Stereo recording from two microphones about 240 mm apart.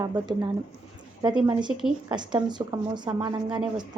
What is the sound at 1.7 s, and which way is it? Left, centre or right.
Speech, centre.